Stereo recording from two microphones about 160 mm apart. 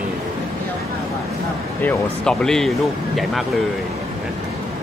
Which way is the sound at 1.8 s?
5° left (ahead or behind).